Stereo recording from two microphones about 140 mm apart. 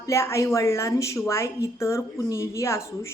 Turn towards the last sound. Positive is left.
turn(degrees=20)  # may be behind; listen again after turning